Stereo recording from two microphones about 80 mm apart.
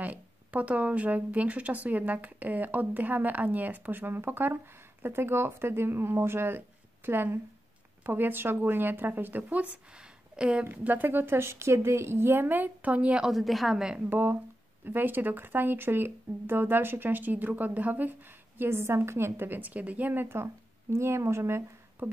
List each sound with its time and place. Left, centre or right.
0.0 s a woman's voice: centre
10.6 s speech: right
13.3 s a woman's voice: centre
13.9 s speech: right